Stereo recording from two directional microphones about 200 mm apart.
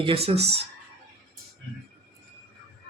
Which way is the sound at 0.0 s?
30° right (ahead or behind).